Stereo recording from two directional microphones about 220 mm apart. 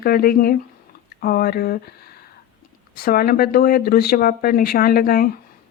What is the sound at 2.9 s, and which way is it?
Speech, 45° left (ahead or behind).